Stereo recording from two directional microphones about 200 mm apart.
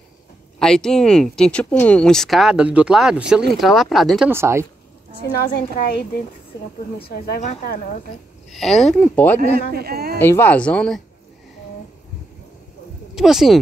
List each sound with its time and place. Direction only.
0.6 s speech: 5° left (ahead or behind)
4.3 s speech: 15° right (ahead or behind)
5.4 s a woman's voice: 50° left (ahead or behind)
8.5 s speech: centre (ahead or behind)
9.7 s speech: 50° right (ahead or behind)
10.1 s speech: 10° left (ahead or behind)
13.1 s speech: centre (ahead or behind)